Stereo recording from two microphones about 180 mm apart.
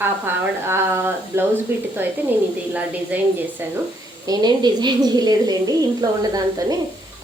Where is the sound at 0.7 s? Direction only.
10° right (ahead or behind).